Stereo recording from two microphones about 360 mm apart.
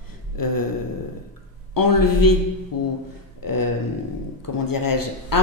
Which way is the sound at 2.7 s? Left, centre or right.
Left.